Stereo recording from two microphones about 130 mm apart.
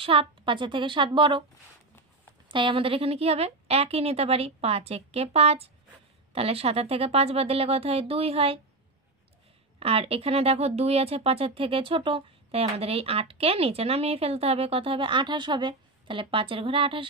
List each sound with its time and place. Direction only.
0.0 s a woman's voice: 45° right (ahead or behind)
2.4 s speech: 40° right (ahead or behind)
9.8 s speech: 50° right (ahead or behind)